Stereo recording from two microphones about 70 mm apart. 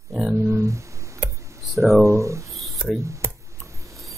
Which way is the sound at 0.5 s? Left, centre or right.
Right.